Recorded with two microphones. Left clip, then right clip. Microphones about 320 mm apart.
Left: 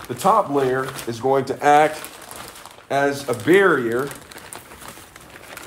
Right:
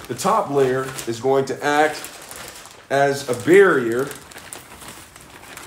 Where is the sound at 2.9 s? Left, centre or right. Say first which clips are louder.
Right 2 dB; centre.